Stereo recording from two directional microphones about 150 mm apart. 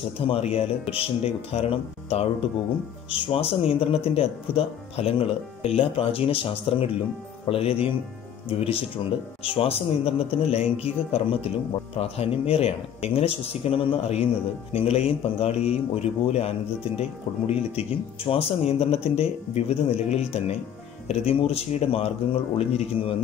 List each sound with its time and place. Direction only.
0.3 s speech: 45° left (ahead or behind)